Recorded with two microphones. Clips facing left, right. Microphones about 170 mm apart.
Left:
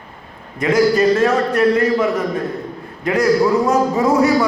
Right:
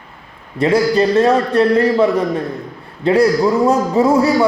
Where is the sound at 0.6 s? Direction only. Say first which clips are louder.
Right 1 dB; 30° right (ahead or behind).